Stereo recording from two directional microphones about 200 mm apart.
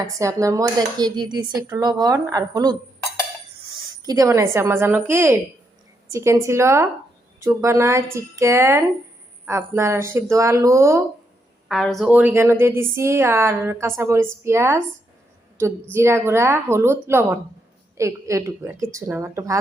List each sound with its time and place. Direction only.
0.0 s speech: 15° right (ahead or behind)
4.0 s a woman's voice: 15° right (ahead or behind)
11.7 s a woman's voice: centre (ahead or behind); by 19.5 s 15° right (ahead or behind)